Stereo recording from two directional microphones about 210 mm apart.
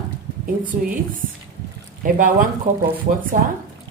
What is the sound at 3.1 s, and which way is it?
Speech, 35° right (ahead or behind).